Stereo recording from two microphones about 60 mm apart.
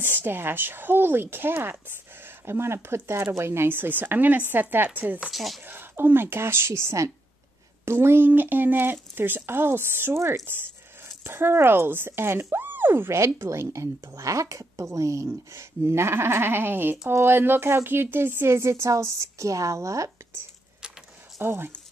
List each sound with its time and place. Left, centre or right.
0.0 s speech: right
5.3 s speech: centre
5.7 s speech: right
8.3 s speech: right
21.4 s speech: right